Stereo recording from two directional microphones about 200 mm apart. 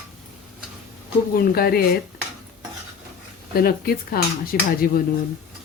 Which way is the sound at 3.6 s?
50° left (ahead or behind).